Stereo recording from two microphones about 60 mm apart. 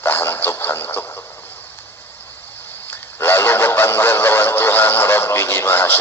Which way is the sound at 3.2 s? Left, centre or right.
Left.